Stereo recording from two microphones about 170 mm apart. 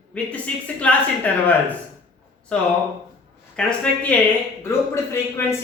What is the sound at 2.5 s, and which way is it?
A man's voice, 5° left (ahead or behind).